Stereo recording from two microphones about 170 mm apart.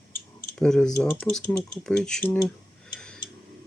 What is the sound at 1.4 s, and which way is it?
Speech, 15° left (ahead or behind).